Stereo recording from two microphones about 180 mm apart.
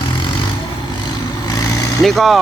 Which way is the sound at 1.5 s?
20° left (ahead or behind).